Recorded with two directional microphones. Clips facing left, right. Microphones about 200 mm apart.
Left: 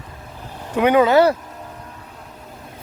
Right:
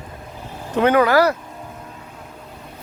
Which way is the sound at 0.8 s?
15° left (ahead or behind).